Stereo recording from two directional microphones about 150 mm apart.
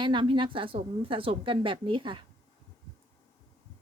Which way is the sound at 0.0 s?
35° right (ahead or behind).